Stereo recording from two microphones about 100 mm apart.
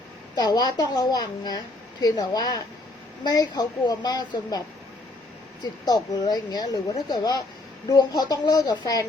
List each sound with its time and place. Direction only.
0.3 s a woman's voice: 45° left (ahead or behind)
5.8 s speech: 40° left (ahead or behind)